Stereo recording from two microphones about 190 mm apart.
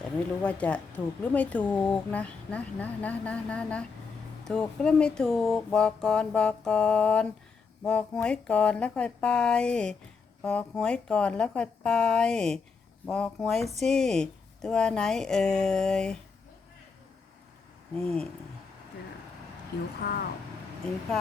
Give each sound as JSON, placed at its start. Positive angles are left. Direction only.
{"t": 0.4, "sound": "speech", "side_deg": 5}
{"t": 17.9, "sound": "speech", "side_deg": 5}
{"t": 20.0, "sound": "speech", "side_deg": 60}